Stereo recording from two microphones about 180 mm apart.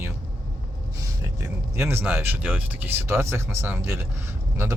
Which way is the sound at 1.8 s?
15° right (ahead or behind).